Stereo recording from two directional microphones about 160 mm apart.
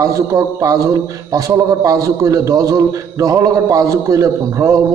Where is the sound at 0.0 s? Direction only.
20° right (ahead or behind).